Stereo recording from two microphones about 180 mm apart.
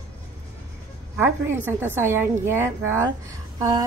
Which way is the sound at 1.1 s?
10° right (ahead or behind).